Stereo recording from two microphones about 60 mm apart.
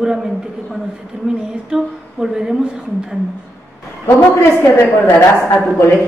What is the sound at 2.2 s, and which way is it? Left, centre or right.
Speech, centre.